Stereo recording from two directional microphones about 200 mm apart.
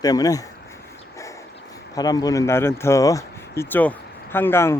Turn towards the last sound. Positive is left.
turn(degrees=10)  # may be behind; listen again after turning